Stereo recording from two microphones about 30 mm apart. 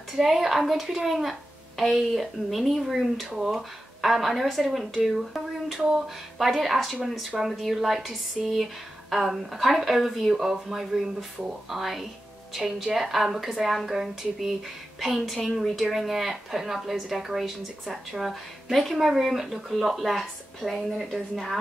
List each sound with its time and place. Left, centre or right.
0.1 s a woman's voice: centre
3.3 s speech: centre
4.0 s a woman's voice: centre
5.1 s a sound: centre
6.3 s a woman's voice: centre
11.7 s a woman's voice: centre
15.9 s a woman's voice: centre